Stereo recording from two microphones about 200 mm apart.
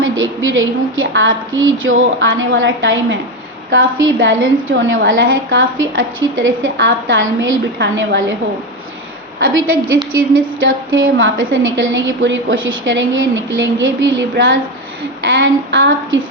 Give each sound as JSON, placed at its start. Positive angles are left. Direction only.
{"t": 0.0, "sound": "a woman's voice", "side_deg": -80}
{"t": 10.1, "sound": "a woman's voice", "side_deg": -85}